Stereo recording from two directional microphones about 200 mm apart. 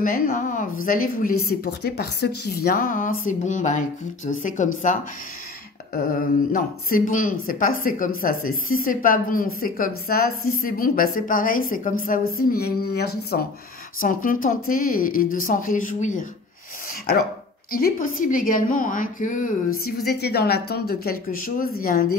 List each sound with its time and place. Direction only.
0.0 s a woman's voice: 40° left (ahead or behind)
5.9 s a woman's voice: 45° left (ahead or behind)
17.6 s a woman's voice: 45° left (ahead or behind)
19.8 s a woman's voice: 50° left (ahead or behind)